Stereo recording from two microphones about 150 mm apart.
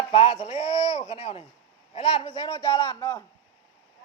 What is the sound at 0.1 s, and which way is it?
Chopping, 35° left (ahead or behind).